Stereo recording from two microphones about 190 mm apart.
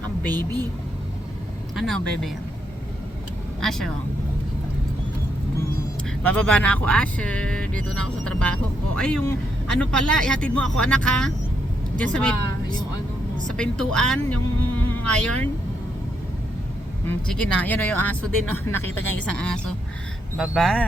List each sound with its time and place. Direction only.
0.3 s a woman's voice: 20° right (ahead or behind)
1.7 s speech: centre (ahead or behind)
3.6 s speech: centre (ahead or behind)
6.2 s speech: 5° left (ahead or behind)
13.6 s speech: 5° left (ahead or behind)
17.1 s speech: 5° left (ahead or behind)